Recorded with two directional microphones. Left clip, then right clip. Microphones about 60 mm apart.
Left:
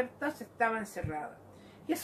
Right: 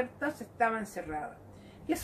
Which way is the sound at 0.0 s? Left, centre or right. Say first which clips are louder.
Right 1 dB; centre.